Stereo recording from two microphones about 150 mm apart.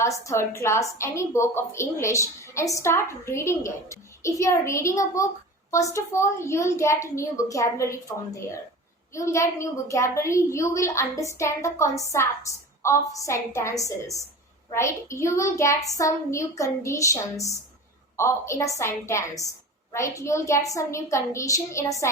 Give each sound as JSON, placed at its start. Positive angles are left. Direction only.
{"t": 0.3, "sound": "a woman's voice", "side_deg": 20}